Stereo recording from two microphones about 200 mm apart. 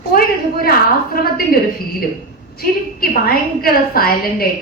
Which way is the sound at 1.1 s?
45° left (ahead or behind).